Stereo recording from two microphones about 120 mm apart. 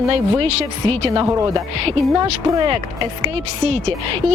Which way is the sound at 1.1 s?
40° right (ahead or behind).